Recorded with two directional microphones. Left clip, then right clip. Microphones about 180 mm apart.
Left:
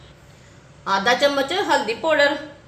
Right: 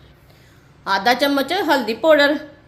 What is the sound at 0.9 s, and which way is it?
A woman's voice, 50° right (ahead or behind).